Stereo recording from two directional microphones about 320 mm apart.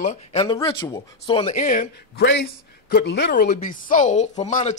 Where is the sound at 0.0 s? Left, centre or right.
Left.